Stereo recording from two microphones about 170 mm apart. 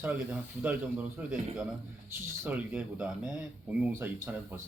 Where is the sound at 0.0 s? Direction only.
10° right (ahead or behind).